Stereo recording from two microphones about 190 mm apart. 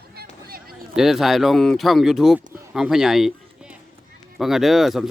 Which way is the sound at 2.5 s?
5° right (ahead or behind).